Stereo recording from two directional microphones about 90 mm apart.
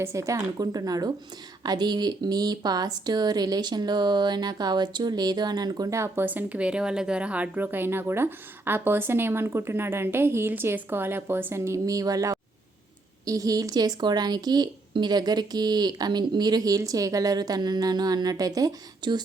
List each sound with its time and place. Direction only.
0.0 s speech: 35° right (ahead or behind)
6.0 s a woman's voice: 25° right (ahead or behind); by 19.2 s 50° right (ahead or behind)